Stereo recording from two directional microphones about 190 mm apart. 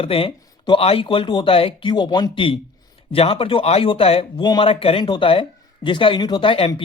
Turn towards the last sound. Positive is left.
turn(degrees=30)  # may be behind; listen again after turning